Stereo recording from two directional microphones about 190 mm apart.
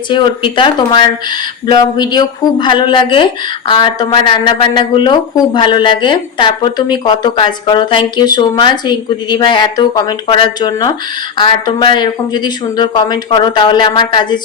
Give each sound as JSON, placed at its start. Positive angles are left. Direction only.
{"t": 0.1, "sound": "speech", "side_deg": 25}